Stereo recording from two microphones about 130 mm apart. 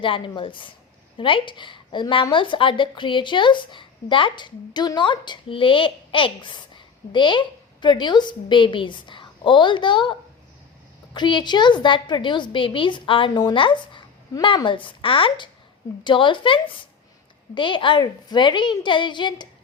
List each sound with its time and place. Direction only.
0.0 s speech: 40° left (ahead or behind)